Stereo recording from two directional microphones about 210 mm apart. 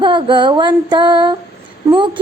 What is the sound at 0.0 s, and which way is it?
Music, 20° right (ahead or behind).